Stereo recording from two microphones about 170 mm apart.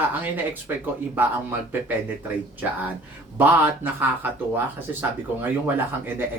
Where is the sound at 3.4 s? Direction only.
10° right (ahead or behind).